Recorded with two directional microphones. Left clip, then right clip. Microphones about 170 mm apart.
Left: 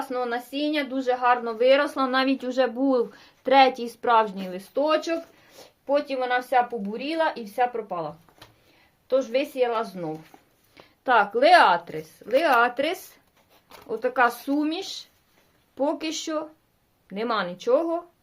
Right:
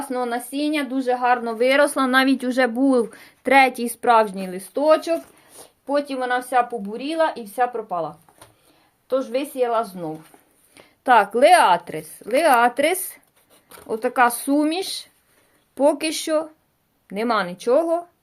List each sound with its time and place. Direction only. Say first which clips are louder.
0.0 s speech: right 3 dB; 35° right (ahead or behind)
9.0 s a woman's voice: even; 20° right (ahead or behind)
10.8 s a woman's voice: right 5 dB; 45° right (ahead or behind)